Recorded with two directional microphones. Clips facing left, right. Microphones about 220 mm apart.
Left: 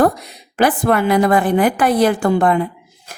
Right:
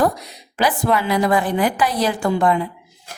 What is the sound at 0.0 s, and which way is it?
A woman's voice, 55° left (ahead or behind).